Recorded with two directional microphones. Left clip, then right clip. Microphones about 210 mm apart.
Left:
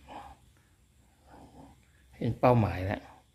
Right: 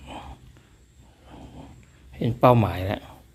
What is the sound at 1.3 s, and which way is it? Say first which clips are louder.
Dog: right 7 dB; 10° left (ahead or behind).